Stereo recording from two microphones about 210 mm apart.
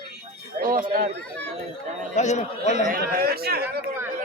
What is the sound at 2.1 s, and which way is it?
Speech, 35° left (ahead or behind).